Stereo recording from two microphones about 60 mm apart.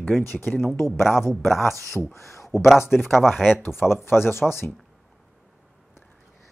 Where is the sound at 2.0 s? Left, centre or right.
Left.